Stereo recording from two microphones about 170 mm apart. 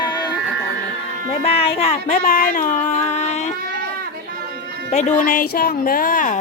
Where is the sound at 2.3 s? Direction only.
55° left (ahead or behind).